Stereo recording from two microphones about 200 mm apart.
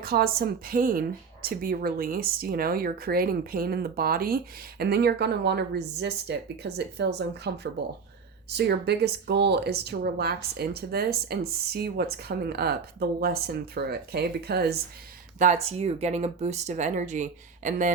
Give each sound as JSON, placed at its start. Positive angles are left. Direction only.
{"t": 0.0, "sound": "speech", "side_deg": -50}
{"t": 15.4, "sound": "speech", "side_deg": -35}